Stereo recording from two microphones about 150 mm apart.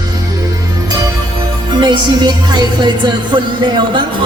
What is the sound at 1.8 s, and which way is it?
Speech, 30° right (ahead or behind).